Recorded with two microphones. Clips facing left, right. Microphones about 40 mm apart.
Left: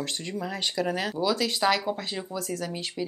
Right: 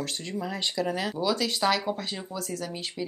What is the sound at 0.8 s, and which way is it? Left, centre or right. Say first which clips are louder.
Speech: left 1 dB; centre.